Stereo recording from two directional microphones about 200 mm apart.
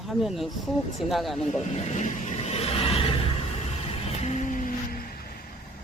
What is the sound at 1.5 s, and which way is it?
Vehicle, 35° left (ahead or behind).